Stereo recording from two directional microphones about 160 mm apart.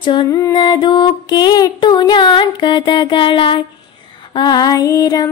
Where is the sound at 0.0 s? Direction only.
30° left (ahead or behind).